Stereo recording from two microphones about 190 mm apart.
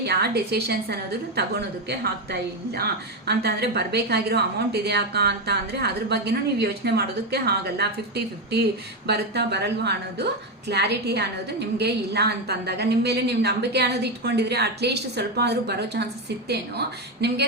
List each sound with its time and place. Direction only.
0.0 s a woman's voice: 60° right (ahead or behind)